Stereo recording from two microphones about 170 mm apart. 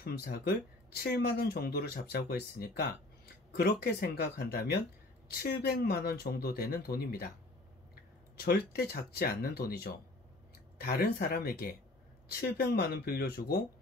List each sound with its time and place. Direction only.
0.0 s speech: 65° left (ahead or behind)